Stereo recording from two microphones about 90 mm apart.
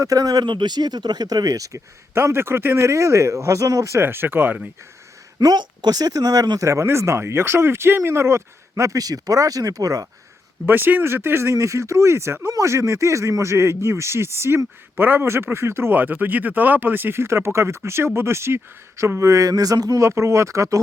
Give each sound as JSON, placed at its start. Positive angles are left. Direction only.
{"t": 0.0, "sound": "speech", "side_deg": -40}
{"t": 0.4, "sound": "speech", "side_deg": -60}
{"t": 2.1, "sound": "speech", "side_deg": -25}
{"t": 5.4, "sound": "speech", "side_deg": -50}
{"t": 10.7, "sound": "speech", "side_deg": -25}